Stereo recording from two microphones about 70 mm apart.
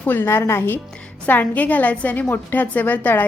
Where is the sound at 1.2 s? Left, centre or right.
Left.